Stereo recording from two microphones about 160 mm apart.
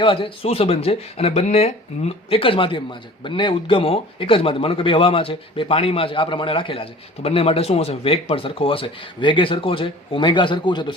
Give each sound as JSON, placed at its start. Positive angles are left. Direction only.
{"t": 0.0, "sound": "speech", "side_deg": 35}